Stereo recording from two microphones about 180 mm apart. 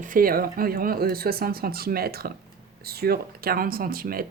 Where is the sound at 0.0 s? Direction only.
50° right (ahead or behind).